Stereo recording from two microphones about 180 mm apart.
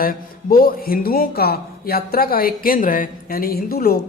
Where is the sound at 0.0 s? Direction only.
50° left (ahead or behind).